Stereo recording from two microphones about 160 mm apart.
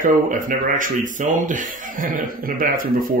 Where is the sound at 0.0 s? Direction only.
55° right (ahead or behind).